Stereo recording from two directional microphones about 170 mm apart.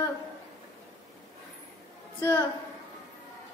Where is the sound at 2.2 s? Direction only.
25° left (ahead or behind).